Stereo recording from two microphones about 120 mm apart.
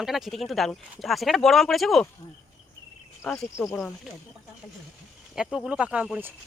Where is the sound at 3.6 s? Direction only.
20° left (ahead or behind).